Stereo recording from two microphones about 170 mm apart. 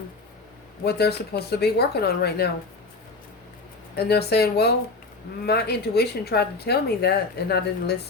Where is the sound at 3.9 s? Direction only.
75° left (ahead or behind).